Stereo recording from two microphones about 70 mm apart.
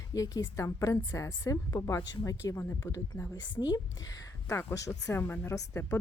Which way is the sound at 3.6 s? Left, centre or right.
Left.